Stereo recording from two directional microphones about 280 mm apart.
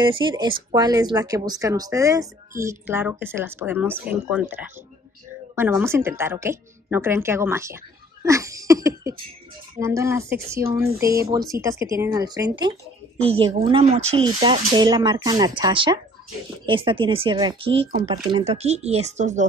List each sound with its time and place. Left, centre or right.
0.0 s speech: centre